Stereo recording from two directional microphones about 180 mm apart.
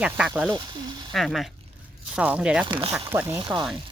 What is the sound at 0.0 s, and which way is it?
Speech, 5° right (ahead or behind).